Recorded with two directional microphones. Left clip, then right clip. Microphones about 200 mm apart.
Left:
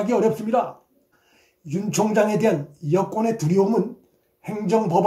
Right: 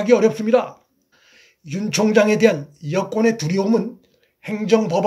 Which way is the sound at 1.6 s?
30° right (ahead or behind).